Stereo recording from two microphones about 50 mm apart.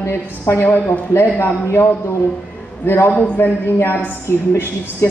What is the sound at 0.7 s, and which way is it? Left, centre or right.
Speech, left.